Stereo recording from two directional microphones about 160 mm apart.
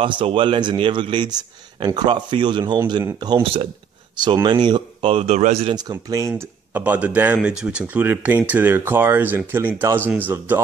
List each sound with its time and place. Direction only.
0.0 s speech: 30° right (ahead or behind)
5.8 s speech: 25° right (ahead or behind)